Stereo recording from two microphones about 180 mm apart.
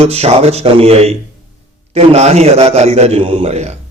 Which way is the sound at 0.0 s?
35° right (ahead or behind).